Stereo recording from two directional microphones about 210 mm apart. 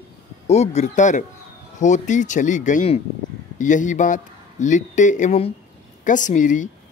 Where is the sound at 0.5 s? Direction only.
30° left (ahead or behind).